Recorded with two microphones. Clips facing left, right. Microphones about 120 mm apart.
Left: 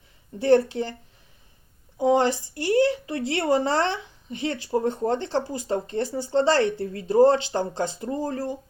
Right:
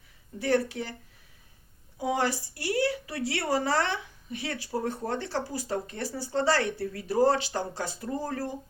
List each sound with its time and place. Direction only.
0.3 s speech: 25° left (ahead or behind)
2.0 s speech: 25° left (ahead or behind)